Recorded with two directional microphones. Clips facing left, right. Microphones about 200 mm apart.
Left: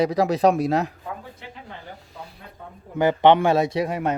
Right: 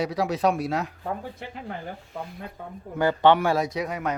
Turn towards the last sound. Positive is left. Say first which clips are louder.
# left 5 dB
turn(degrees=30)  # may be behind; listen again after turning